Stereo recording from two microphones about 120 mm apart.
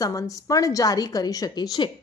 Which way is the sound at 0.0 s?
30° left (ahead or behind).